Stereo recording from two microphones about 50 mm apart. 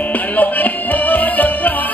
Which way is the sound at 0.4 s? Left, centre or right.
Left.